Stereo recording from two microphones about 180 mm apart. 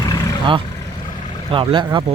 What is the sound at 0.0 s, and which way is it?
Vehicle, 20° left (ahead or behind).